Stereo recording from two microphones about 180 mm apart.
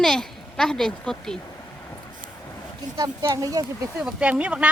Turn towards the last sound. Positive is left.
turn(degrees=-5)  # may be behind; listen again after turning